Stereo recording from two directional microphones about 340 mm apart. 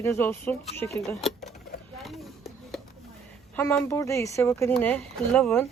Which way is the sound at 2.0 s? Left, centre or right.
Centre.